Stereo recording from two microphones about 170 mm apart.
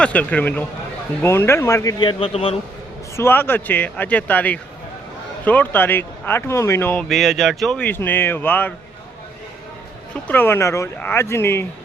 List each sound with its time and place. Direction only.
0.0 s speech: 10° left (ahead or behind); by 2.6 s 35° left (ahead or behind)
3.2 s speech: 10° left (ahead or behind)
7.1 s speech: centre (ahead or behind)
10.2 s speech: 10° left (ahead or behind)